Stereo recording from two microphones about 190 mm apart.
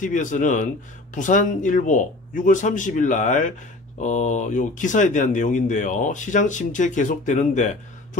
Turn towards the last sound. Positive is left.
turn(degrees=40)  # may be behind; listen again after turning